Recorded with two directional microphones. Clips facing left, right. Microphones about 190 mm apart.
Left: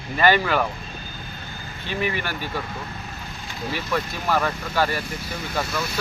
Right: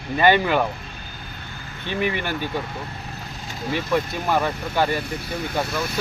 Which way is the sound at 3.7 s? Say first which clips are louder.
Right 4 dB; 20° right (ahead or behind).